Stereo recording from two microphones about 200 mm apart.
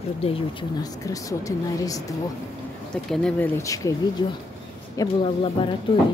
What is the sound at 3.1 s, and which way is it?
A woman's voice, 5° left (ahead or behind).